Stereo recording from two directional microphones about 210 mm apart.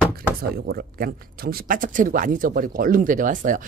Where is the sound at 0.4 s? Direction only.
45° right (ahead or behind).